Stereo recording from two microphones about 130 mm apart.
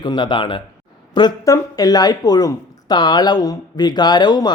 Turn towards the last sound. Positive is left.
turn(degrees=35)  # may be behind; listen again after turning